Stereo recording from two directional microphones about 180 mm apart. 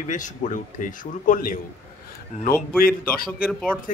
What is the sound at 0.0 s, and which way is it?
Speech, 45° left (ahead or behind).